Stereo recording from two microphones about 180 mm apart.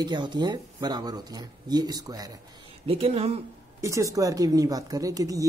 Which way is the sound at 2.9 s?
35° right (ahead or behind).